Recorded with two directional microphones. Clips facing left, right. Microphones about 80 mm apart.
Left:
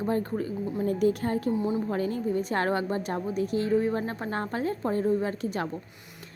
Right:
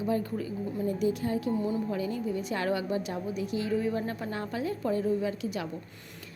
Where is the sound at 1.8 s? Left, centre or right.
Left.